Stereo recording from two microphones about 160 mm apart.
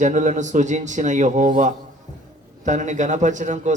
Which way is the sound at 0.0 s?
50° right (ahead or behind).